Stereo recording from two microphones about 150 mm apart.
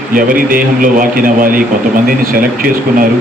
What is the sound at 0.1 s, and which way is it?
Speech, 70° right (ahead or behind).